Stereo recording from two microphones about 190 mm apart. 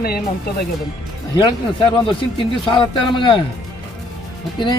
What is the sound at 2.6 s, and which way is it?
Speech, 25° left (ahead or behind).